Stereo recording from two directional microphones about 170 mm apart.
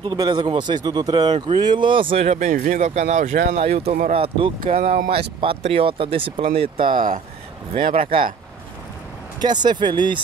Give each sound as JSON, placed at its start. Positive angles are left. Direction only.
{"t": 0.0, "sound": "speech", "side_deg": -25}
{"t": 8.0, "sound": "speech", "side_deg": -30}
{"t": 9.4, "sound": "speech", "side_deg": -25}